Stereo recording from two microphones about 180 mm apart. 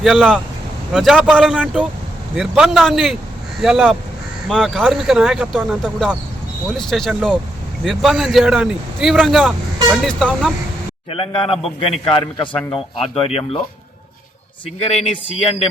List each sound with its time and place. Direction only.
0.0 s speech: centre (ahead or behind)
11.1 s a man's voice: 30° left (ahead or behind)
14.8 s a man's voice: 30° left (ahead or behind)